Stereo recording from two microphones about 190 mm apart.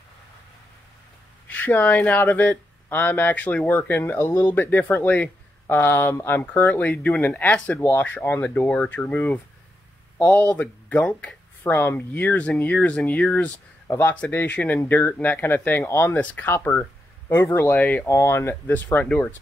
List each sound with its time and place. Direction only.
1.5 s speech: 10° left (ahead or behind)